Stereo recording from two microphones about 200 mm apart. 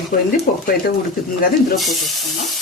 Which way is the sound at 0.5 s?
45° left (ahead or behind).